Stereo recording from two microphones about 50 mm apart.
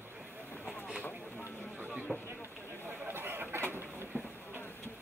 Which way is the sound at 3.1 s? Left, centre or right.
Right.